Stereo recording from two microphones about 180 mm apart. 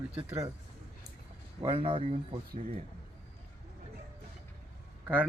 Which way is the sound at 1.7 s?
30° right (ahead or behind).